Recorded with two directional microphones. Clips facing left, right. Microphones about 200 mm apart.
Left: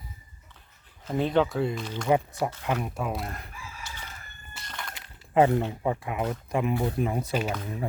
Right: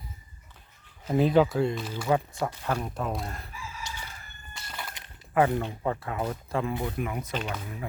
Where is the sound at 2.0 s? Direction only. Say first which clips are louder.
Left 2 dB; 15° left (ahead or behind).